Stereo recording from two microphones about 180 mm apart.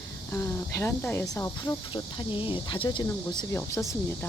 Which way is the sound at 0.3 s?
15° left (ahead or behind).